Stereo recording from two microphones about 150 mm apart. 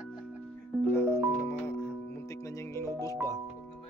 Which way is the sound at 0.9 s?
15° left (ahead or behind).